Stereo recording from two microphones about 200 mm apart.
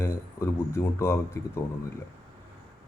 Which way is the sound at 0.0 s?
15° left (ahead or behind).